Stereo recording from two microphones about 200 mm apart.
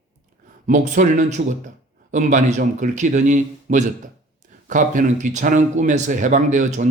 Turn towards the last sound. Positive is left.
turn(degrees=-40)  # may be behind; listen again after turning